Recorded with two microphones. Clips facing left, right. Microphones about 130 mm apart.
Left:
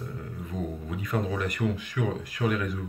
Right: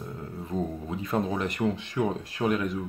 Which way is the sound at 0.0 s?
25° right (ahead or behind).